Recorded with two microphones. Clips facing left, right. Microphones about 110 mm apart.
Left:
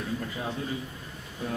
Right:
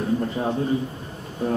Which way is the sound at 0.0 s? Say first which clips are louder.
Right 9 dB; 35° right (ahead or behind).